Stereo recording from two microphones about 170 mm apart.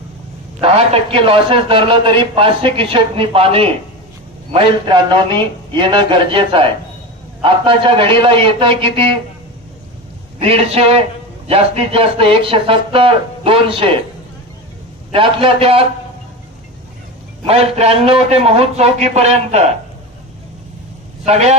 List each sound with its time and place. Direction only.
1.1 s a man's voice: 30° right (ahead or behind)
10.4 s a man's voice: 35° right (ahead or behind)
15.1 s a man's voice: 30° right (ahead or behind)
17.4 s a man's voice: 35° right (ahead or behind)
21.2 s a man's voice: 40° right (ahead or behind)